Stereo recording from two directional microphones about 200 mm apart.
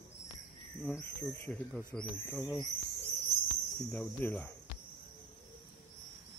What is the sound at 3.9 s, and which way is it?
Speech, 10° left (ahead or behind).